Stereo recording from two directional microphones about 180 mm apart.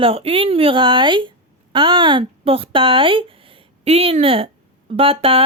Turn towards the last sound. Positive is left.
turn(degrees=-30)  # may be behind; listen again after turning